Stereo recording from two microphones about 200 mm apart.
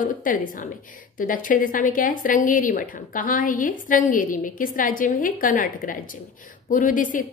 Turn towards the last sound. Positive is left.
turn(degrees=40)  # may be behind; listen again after turning